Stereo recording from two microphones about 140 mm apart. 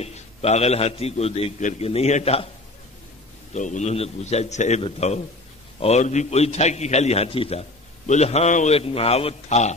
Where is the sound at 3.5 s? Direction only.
60° left (ahead or behind).